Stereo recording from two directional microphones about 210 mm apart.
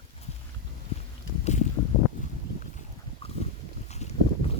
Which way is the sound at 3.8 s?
30° left (ahead or behind).